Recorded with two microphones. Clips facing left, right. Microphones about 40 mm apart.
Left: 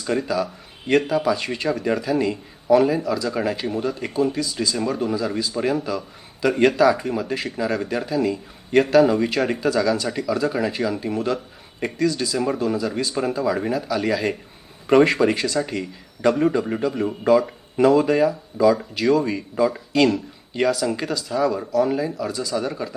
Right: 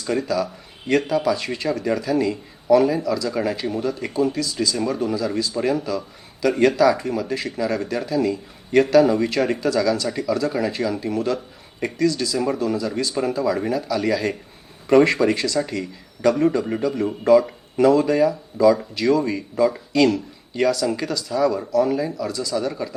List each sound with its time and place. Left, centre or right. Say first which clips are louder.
0.0 s speech: even; centre
6.9 s speech: even; centre
17.1 s speech: right 3 dB; centre
22.3 s speech: right 1 dB; left